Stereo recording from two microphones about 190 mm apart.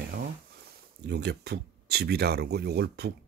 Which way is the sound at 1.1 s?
60° right (ahead or behind).